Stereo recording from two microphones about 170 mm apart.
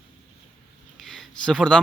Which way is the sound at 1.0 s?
Centre (ahead or behind).